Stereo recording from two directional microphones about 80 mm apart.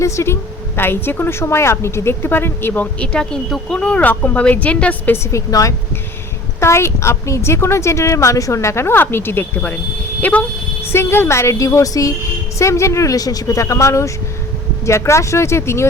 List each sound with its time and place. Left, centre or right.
0.0 s a woman's voice: left
2.8 s speech: centre
5.1 s a woman's voice: left
5.5 s speech: left
6.6 s a woman's voice: left
10.9 s a woman's voice: left